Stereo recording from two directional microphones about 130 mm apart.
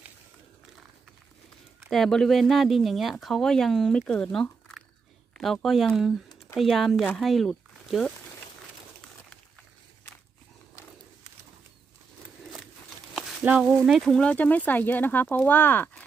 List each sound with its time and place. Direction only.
1.9 s speech: 5° left (ahead or behind)
13.1 s speech: 10° right (ahead or behind); by 16.0 s 15° left (ahead or behind)